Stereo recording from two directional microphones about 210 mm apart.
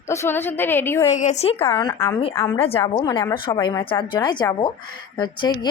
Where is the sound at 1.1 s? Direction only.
35° left (ahead or behind).